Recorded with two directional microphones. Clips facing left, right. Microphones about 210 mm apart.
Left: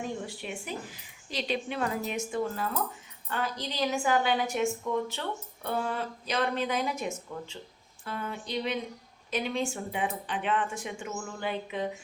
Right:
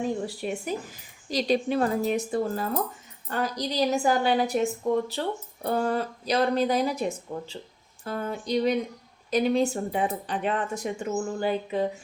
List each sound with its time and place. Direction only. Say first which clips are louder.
0.0 s speech: right 7 dB; 35° right (ahead or behind)